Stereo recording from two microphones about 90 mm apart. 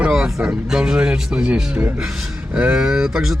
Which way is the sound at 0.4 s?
10° right (ahead or behind).